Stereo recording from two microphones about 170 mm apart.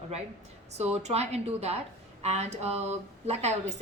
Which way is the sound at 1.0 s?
40° right (ahead or behind).